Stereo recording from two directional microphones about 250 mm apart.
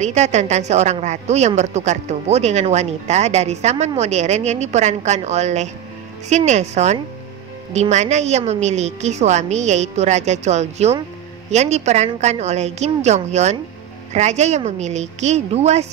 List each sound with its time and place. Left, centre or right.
0.0 s a woman's voice: right